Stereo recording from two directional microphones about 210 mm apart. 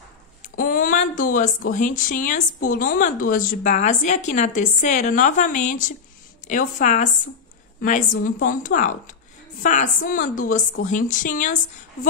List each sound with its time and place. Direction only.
0.4 s speech: 40° left (ahead or behind)